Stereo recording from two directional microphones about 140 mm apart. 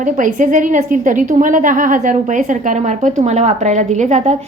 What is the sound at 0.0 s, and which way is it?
A woman's voice, 65° right (ahead or behind).